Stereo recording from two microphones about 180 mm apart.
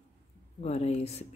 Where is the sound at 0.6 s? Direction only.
35° left (ahead or behind).